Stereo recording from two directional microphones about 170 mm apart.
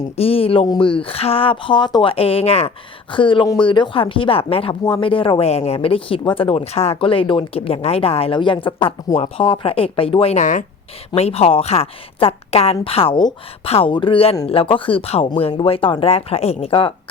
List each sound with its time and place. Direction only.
0.2 s speech: 35° left (ahead or behind)